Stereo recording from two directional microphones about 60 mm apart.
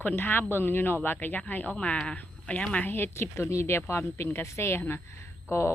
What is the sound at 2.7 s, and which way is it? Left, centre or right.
Speech, left.